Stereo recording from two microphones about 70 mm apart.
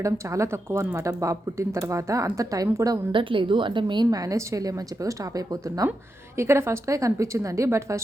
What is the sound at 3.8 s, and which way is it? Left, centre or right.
Speech, right.